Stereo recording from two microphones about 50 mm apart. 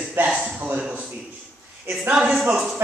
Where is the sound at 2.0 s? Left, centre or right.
Right.